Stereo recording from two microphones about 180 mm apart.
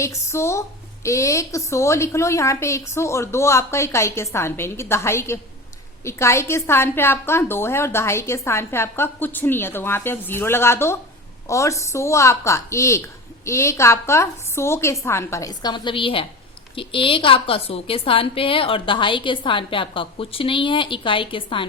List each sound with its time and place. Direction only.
0.0 s a woman's voice: 15° left (ahead or behind)